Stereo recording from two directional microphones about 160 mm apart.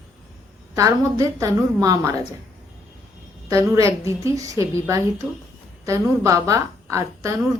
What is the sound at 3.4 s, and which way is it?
A woman's voice, 20° right (ahead or behind).